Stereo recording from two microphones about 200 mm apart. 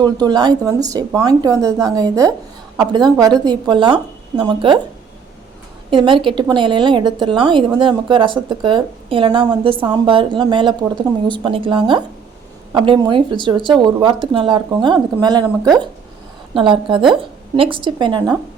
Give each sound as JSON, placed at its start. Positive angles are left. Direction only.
{"t": 0.0, "sound": "a woman's voice", "side_deg": -20}
{"t": 5.9, "sound": "a woman's voice", "side_deg": -25}
{"t": 16.6, "sound": "a woman's voice", "side_deg": -25}